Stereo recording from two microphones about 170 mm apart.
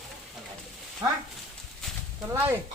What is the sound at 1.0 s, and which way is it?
Speech, 20° right (ahead or behind).